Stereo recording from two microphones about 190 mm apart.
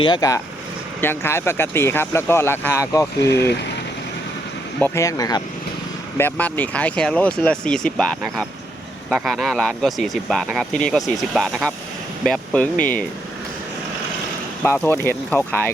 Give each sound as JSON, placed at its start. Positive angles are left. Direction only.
{"t": 0.0, "sound": "speech", "side_deg": 20}
{"t": 3.4, "sound": "speech", "side_deg": 65}
{"t": 4.8, "sound": "speech", "side_deg": 15}
{"t": 9.0, "sound": "speech", "side_deg": 0}
{"t": 14.6, "sound": "speech", "side_deg": 10}